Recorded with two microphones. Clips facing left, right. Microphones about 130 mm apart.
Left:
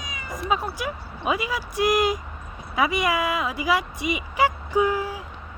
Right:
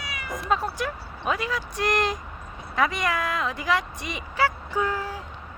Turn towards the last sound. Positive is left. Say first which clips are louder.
# left 5 dB
turn(degrees=10)  # may be behind; listen again after turning